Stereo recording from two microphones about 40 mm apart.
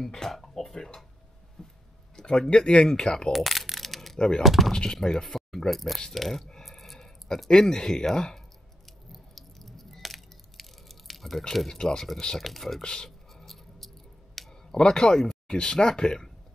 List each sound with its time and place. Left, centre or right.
0.0 s music: centre
1.6 s a sound: centre
2.1 s speech: centre
3.3 s a sound: centre
4.4 s speech: centre
5.0 s speech: centre
9.1 s a sound: centre
11.5 s speech: centre
11.8 s speech: centre
12.4 s speech: centre
12.8 s speech: centre
13.3 s scissors: centre
14.5 s speech: centre